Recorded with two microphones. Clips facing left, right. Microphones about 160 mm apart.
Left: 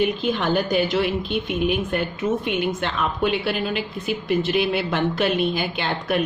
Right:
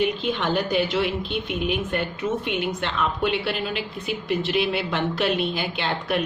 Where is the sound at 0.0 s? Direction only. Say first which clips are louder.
Left 2 dB; 45° left (ahead or behind).